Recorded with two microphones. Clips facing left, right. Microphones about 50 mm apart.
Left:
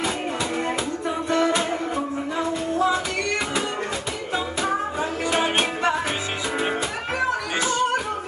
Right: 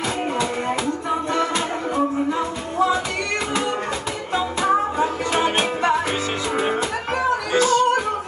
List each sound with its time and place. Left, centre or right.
1.3 s music: centre
6.5 s music: centre
7.5 s music: left